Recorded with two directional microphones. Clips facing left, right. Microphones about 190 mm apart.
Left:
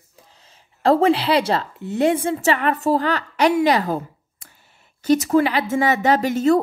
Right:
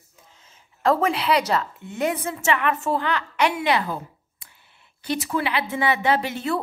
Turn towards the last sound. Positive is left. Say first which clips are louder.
# left 7 dB
turn(degrees=45)  # may be behind; listen again after turning